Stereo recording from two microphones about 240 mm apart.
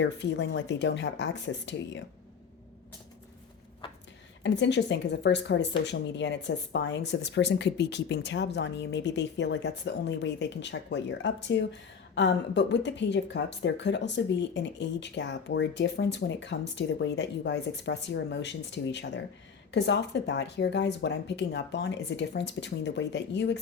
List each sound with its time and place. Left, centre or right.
0.0 s a woman's voice: left
4.4 s a woman's voice: left